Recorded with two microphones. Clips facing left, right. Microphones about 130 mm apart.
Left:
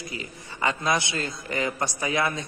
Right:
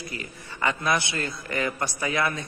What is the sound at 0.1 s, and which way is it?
A man's voice, 20° left (ahead or behind).